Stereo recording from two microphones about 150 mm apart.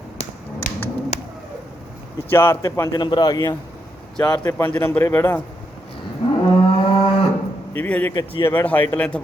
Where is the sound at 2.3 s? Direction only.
15° left (ahead or behind).